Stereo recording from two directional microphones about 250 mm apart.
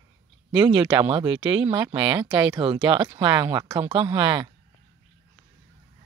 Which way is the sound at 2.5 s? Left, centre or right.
Centre.